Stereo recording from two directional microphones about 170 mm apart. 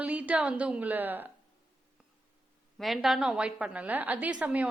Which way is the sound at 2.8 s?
Centre (ahead or behind).